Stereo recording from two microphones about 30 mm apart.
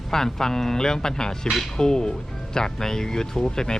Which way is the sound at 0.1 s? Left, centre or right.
Centre.